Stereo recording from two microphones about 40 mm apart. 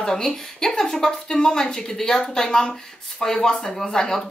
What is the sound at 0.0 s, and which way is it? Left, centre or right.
Speech, centre.